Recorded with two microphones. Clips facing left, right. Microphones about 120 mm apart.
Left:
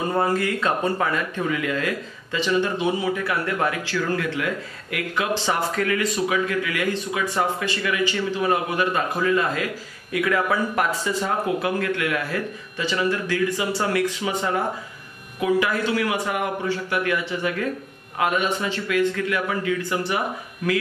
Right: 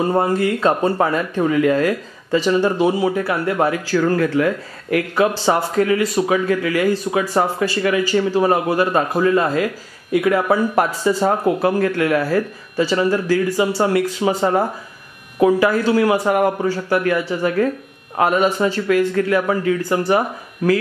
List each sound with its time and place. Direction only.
0.1 s speech: 30° right (ahead or behind)